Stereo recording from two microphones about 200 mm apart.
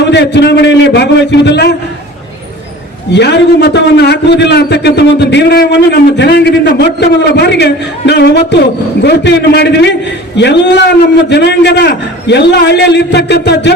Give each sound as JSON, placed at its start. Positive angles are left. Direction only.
{"t": 0.1, "sound": "a man's voice", "side_deg": 60}
{"t": 3.1, "sound": "a man's voice", "side_deg": 60}